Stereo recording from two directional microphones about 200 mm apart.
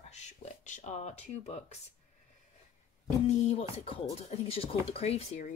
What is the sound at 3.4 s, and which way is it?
Beatboxing, 30° left (ahead or behind).